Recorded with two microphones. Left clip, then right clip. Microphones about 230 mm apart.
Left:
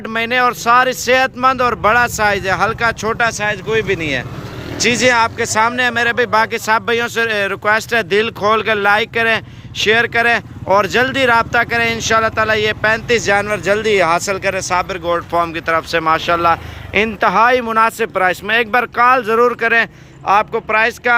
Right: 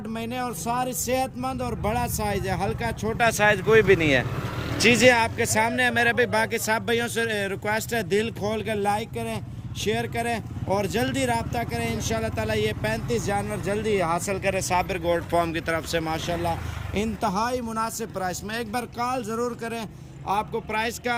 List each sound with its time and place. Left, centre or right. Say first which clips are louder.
0.2 s speech: left 17 dB; centre
17.6 s speech: left 15 dB; left
18.5 s speech: left 16 dB; centre